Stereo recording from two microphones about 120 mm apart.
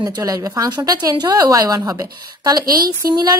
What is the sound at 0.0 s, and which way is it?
A woman's voice, 30° right (ahead or behind).